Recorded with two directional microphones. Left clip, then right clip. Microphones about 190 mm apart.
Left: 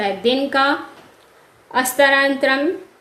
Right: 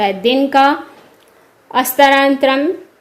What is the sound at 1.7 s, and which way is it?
Speech, 30° right (ahead or behind).